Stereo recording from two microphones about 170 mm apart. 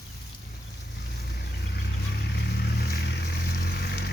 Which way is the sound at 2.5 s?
70° left (ahead or behind).